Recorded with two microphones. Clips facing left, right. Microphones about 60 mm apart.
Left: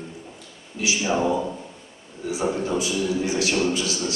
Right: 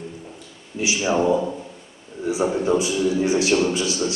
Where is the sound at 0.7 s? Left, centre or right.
Right.